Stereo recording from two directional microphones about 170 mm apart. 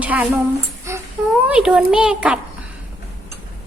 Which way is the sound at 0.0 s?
10° right (ahead or behind).